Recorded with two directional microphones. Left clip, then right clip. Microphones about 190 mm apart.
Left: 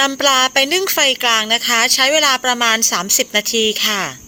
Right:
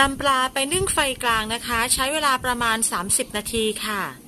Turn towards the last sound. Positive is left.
turn(degrees=15)  # may be behind; listen again after turning